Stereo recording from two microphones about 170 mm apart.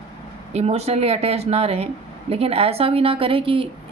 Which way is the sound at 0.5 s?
40° right (ahead or behind).